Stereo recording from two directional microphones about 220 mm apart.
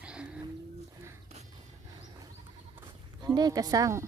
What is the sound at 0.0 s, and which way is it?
Livestock, 5° right (ahead or behind).